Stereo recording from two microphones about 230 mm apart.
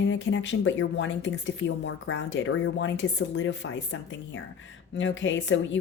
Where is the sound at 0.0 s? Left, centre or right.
Left.